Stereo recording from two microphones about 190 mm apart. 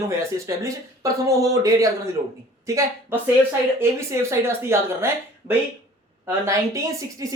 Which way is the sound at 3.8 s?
15° right (ahead or behind).